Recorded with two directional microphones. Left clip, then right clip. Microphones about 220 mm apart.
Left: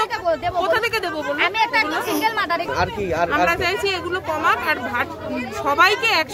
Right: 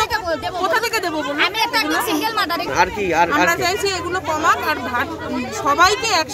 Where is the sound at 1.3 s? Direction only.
25° right (ahead or behind).